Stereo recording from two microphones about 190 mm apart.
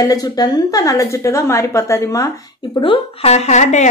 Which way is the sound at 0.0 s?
20° left (ahead or behind).